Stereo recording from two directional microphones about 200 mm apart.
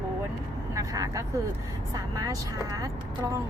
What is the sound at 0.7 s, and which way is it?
A woman's voice, 15° right (ahead or behind).